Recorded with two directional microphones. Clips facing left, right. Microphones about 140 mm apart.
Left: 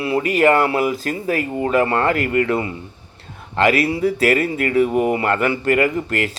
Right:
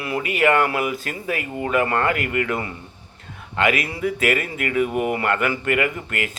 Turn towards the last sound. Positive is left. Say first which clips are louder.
# left 6 dB
turn(degrees=35)  # may be behind; listen again after turning